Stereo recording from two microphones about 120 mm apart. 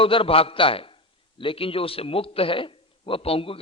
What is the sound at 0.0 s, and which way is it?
A man's voice, 50° left (ahead or behind).